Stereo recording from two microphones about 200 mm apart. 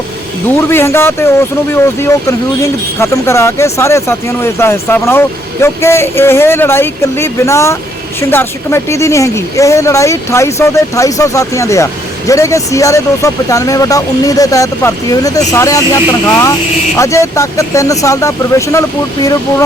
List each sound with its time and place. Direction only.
0.7 s speech: 10° left (ahead or behind)